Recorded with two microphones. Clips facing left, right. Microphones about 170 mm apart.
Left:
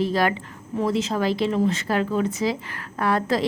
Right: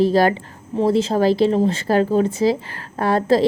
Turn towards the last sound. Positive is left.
turn(degrees=-30)  # may be behind; listen again after turning